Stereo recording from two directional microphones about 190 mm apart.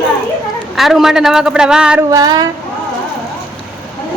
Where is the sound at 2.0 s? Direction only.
20° right (ahead or behind).